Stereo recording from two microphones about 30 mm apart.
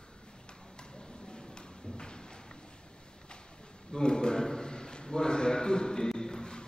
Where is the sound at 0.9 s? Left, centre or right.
Left.